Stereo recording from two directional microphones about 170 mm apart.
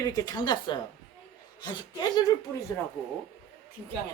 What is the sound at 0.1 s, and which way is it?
A woman's voice, 20° left (ahead or behind).